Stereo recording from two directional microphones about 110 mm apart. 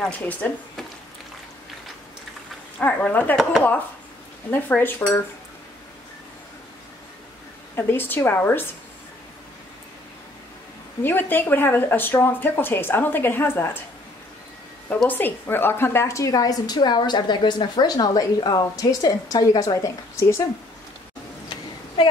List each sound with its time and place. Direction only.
0.0 s speech: 15° left (ahead or behind)
2.8 s speech: 15° left (ahead or behind)
4.5 s speech: 15° left (ahead or behind)
7.7 s speech: 20° left (ahead or behind)
11.0 s speech: 20° left (ahead or behind)
15.0 s a woman's voice: 15° left (ahead or behind)